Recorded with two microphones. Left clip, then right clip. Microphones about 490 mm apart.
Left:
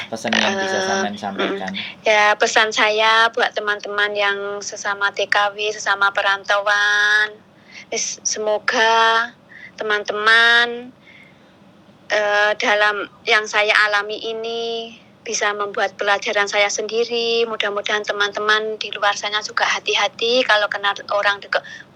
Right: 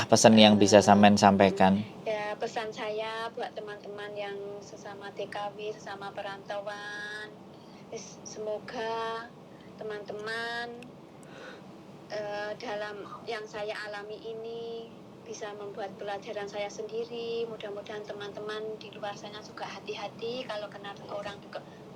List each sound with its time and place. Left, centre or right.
0.1 s speech: right
1.8 s a woman's voice: left
12.0 s a woman's voice: left